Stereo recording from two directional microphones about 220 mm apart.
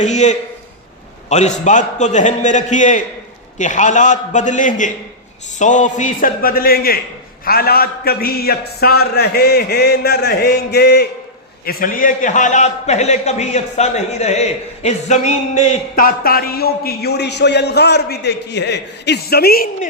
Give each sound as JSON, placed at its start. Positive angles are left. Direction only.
{"t": 0.0, "sound": "a man's voice", "side_deg": 30}